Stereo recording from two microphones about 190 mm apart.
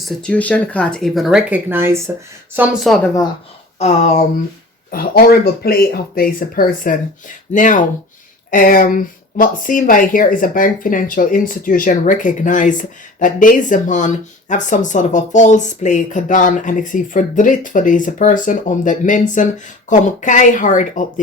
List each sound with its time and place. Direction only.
0.0 s speech: 5° left (ahead or behind); by 2.0 s 10° right (ahead or behind)
2.6 s speech: centre (ahead or behind)
3.8 s a sound: 35° left (ahead or behind)
4.9 s speech: 50° left (ahead or behind)